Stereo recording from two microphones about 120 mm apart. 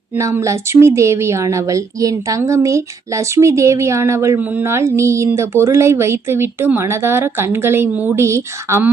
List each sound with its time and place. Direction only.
0.2 s a woman's voice: 25° right (ahead or behind)